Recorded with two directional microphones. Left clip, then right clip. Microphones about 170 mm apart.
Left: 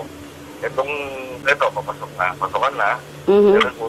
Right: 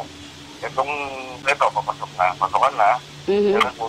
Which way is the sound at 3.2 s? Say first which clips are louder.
Left 6 dB; 30° left (ahead or behind).